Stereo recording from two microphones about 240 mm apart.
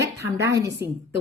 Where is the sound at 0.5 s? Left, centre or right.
Centre.